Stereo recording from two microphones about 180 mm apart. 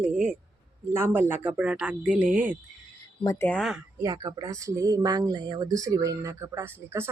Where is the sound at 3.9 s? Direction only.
20° right (ahead or behind).